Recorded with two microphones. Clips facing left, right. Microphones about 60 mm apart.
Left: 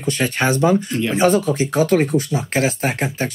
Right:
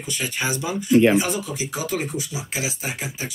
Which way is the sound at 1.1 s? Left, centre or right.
Left.